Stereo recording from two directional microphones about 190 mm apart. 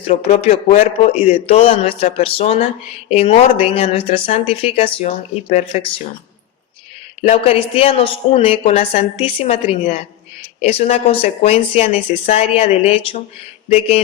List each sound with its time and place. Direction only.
0.1 s speech: 35° left (ahead or behind)
7.2 s speech: 30° left (ahead or behind)